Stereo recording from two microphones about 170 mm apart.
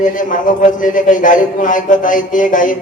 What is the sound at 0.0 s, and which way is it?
Speech, 50° left (ahead or behind).